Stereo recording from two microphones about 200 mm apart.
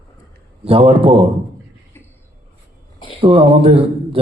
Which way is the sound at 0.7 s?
30° right (ahead or behind).